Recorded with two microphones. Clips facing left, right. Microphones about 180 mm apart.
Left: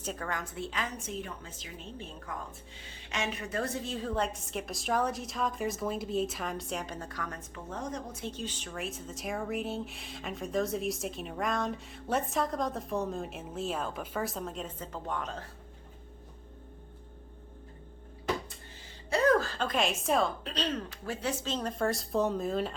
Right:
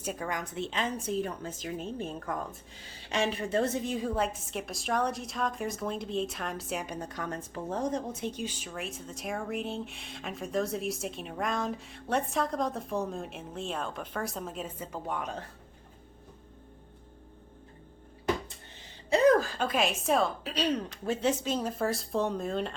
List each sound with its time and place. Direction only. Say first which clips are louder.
0.0 s a woman's voice: right 2 dB; 10° right (ahead or behind); by 2.8 s 45° right (ahead or behind)
3.1 s speech: right 6 dB; 30° right (ahead or behind)
8.2 s speech: right 3 dB; 15° right (ahead or behind)
19.1 s speech: right 3 dB; 15° right (ahead or behind)
21.5 s speech: right 1 dB; 5° right (ahead or behind)